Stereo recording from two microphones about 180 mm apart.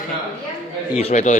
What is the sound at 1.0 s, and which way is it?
Speech, 40° left (ahead or behind).